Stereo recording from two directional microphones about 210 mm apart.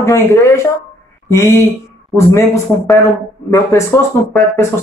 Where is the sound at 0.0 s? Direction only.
15° left (ahead or behind).